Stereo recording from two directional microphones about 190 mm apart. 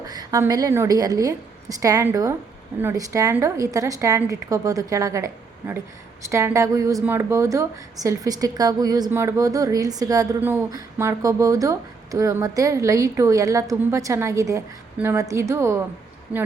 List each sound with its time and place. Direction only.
0.0 s a woman's voice: 20° right (ahead or behind)